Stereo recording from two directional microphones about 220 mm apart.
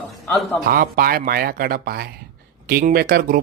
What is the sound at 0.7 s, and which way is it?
Speech, 40° right (ahead or behind).